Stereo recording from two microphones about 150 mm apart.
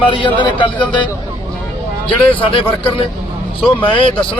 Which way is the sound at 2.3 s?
35° left (ahead or behind).